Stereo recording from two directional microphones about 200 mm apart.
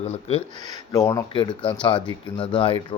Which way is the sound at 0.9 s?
15° left (ahead or behind).